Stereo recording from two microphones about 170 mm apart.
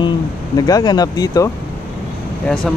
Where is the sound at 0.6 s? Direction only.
20° left (ahead or behind).